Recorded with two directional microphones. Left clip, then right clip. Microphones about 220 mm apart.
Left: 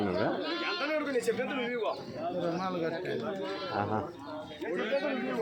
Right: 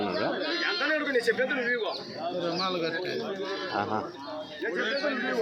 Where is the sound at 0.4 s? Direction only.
40° left (ahead or behind).